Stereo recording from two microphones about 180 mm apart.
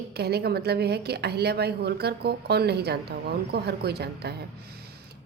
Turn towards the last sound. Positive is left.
turn(degrees=-65)  # may be behind; listen again after turning